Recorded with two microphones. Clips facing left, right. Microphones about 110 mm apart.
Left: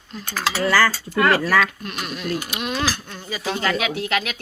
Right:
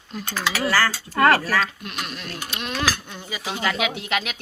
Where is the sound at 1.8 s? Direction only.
Centre (ahead or behind).